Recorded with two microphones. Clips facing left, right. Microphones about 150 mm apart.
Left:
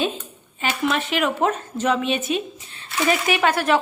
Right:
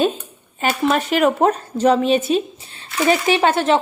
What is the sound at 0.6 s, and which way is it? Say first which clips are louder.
A woman's voice: right 5 dB; 45° right (ahead or behind).